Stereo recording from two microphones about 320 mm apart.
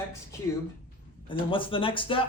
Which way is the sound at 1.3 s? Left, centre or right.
Centre.